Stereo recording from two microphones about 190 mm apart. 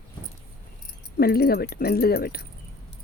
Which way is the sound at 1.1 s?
55° left (ahead or behind).